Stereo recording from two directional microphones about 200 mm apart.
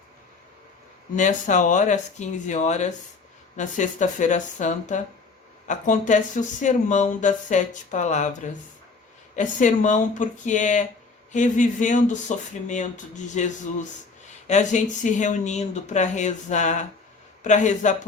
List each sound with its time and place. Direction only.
1.1 s speech: 40° left (ahead or behind)